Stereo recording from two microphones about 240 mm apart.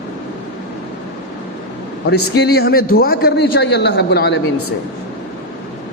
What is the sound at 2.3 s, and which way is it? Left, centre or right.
A man's voice, left.